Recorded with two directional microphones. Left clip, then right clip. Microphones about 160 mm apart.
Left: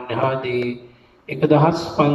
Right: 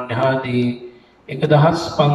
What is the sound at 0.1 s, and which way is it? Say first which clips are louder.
Mantra: right 2 dB; 10° left (ahead or behind).